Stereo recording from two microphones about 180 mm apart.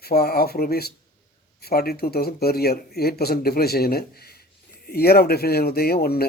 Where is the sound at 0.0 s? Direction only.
60° left (ahead or behind).